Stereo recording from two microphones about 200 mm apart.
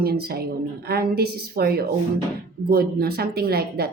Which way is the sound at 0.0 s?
50° right (ahead or behind).